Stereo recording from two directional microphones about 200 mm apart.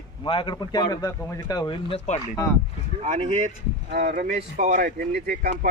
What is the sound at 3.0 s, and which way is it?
Speech, 35° right (ahead or behind).